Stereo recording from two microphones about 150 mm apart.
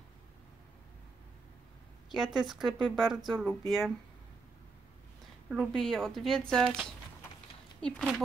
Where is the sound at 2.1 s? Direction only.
Centre (ahead or behind).